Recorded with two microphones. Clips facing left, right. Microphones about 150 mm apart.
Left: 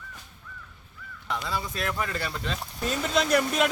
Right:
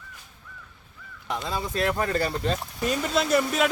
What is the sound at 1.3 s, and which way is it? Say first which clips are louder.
Speech: right 2 dB; 25° right (ahead or behind).